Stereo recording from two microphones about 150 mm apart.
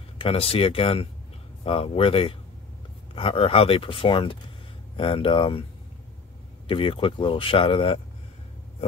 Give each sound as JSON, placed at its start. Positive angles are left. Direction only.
{"t": 0.2, "sound": "speech", "side_deg": 40}
{"t": 6.7, "sound": "speech", "side_deg": 35}